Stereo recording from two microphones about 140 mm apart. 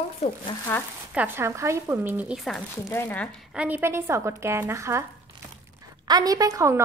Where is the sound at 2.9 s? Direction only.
15° left (ahead or behind).